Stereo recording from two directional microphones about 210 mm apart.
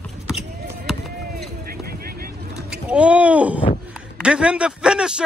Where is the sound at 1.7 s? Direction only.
45° right (ahead or behind).